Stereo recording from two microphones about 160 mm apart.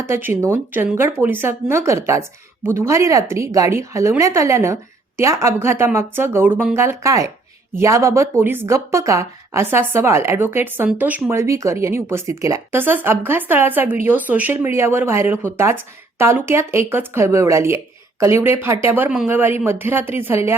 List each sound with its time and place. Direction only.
0.0 s a woman's voice: 15° right (ahead or behind)